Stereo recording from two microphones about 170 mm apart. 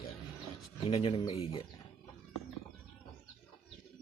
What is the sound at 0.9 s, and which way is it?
Speech, 30° left (ahead or behind).